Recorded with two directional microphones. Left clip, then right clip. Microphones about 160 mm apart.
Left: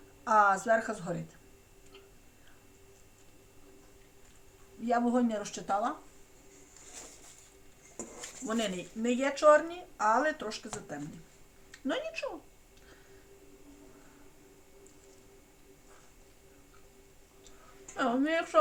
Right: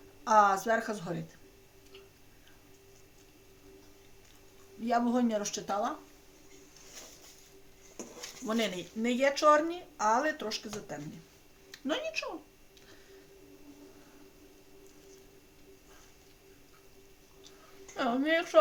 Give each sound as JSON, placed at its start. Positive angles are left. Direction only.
{"t": 0.3, "sound": "speech", "side_deg": -25}
{"t": 4.9, "sound": "speech", "side_deg": -20}
{"t": 8.4, "sound": "speech", "side_deg": -25}
{"t": 11.7, "sound": "speech", "side_deg": -30}
{"t": 17.9, "sound": "speech", "side_deg": -15}